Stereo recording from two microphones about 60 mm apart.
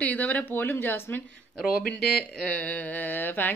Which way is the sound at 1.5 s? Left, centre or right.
Centre.